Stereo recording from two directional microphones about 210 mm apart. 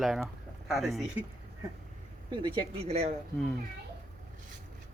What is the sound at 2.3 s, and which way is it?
Speech, 25° right (ahead or behind).